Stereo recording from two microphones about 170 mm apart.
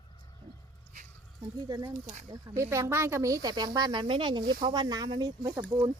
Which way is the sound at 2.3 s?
15° right (ahead or behind).